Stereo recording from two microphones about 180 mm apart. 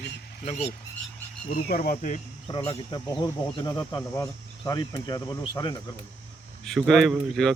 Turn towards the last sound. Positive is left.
turn(degrees=5)  # may be behind; listen again after turning